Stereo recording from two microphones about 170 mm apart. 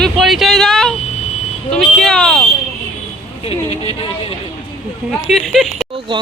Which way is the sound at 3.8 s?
35° left (ahead or behind).